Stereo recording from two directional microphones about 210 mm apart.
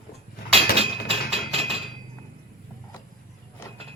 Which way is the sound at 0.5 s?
30° right (ahead or behind).